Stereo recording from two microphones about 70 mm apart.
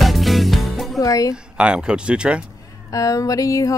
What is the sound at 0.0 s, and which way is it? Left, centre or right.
Music, centre.